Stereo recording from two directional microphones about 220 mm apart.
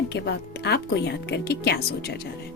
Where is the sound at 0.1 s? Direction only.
50° left (ahead or behind).